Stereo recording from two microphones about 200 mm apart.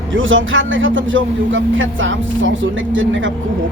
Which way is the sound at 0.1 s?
75° right (ahead or behind).